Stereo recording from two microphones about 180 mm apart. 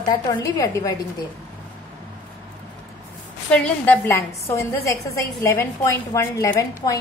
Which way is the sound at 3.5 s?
10° left (ahead or behind).